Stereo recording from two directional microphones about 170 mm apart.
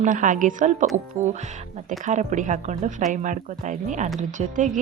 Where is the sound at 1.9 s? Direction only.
45° right (ahead or behind).